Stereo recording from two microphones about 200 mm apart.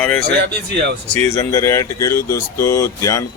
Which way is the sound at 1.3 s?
15° left (ahead or behind).